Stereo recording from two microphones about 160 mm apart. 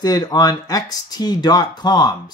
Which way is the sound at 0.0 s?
25° left (ahead or behind).